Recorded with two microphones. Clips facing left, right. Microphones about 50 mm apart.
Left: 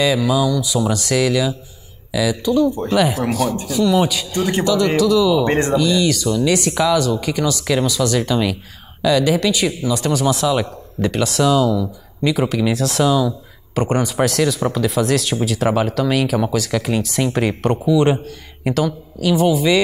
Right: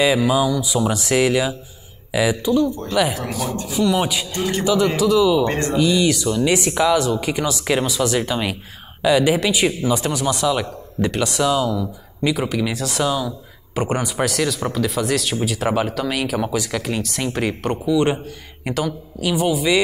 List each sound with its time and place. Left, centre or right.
0.0 s speech: right
2.4 s speech: centre
3.8 s speech: centre
5.4 s speech: left
5.7 s speech: centre
10.1 s speech: centre